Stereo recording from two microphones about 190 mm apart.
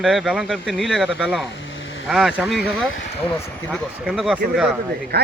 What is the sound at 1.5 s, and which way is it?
Vehicle, 75° left (ahead or behind).